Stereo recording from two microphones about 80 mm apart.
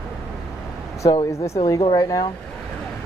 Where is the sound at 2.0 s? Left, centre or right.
Left.